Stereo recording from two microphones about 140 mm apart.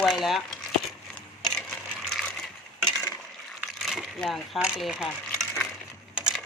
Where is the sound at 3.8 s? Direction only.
Centre (ahead or behind).